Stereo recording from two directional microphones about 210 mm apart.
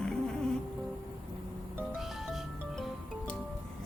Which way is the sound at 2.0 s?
Centre (ahead or behind).